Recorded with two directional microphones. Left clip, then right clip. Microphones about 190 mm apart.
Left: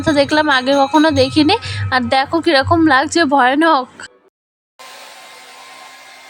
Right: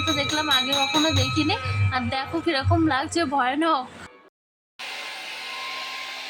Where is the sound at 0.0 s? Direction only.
45° left (ahead or behind).